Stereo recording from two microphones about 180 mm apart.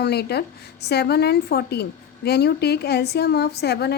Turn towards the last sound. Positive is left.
turn(degrees=65)  # may be behind; listen again after turning